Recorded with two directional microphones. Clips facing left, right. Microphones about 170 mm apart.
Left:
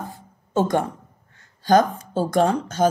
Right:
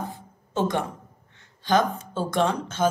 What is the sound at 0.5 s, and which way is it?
Speech, 45° left (ahead or behind).